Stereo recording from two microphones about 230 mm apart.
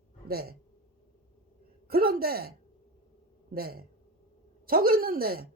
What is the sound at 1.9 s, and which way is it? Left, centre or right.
Speech, right.